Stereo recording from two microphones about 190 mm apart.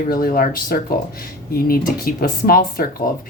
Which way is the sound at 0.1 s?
50° left (ahead or behind).